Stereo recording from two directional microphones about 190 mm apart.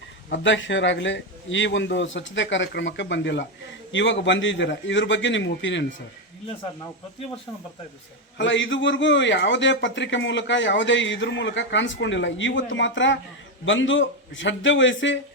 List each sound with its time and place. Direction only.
0.3 s a man's voice: 75° left (ahead or behind)
8.4 s a man's voice: 75° left (ahead or behind)